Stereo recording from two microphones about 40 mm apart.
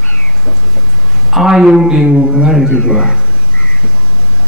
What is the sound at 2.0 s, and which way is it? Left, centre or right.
Speech, right.